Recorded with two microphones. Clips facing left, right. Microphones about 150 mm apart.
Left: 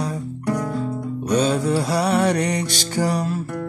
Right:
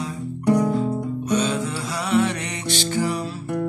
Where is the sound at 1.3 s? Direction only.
35° left (ahead or behind).